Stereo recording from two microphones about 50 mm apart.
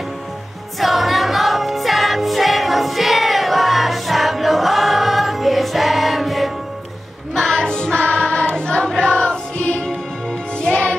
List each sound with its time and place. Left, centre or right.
0.7 s music: centre
7.3 s music: centre